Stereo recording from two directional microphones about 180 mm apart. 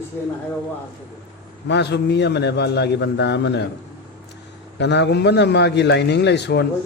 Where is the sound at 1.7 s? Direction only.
70° left (ahead or behind).